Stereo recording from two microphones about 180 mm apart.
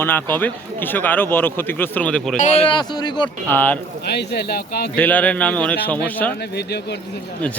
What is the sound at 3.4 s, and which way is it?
Speech, 10° left (ahead or behind).